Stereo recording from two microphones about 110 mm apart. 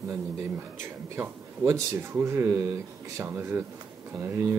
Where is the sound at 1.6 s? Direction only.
25° right (ahead or behind).